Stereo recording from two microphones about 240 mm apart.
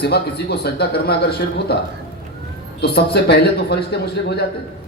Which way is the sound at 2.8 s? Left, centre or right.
Left.